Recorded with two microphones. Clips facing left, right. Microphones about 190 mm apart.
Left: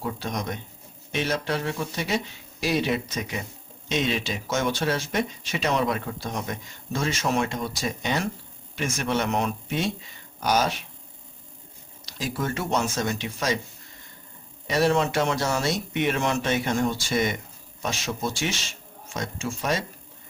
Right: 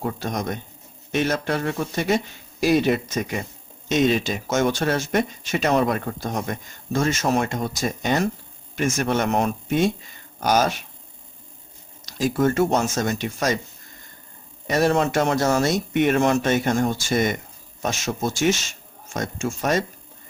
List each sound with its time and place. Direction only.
0.0 s speech: 45° right (ahead or behind)
12.0 s speech: 45° right (ahead or behind)
14.7 s speech: 45° right (ahead or behind)